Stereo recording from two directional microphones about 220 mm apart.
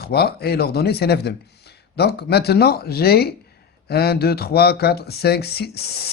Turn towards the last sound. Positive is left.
turn(degrees=45)  # may be behind; listen again after turning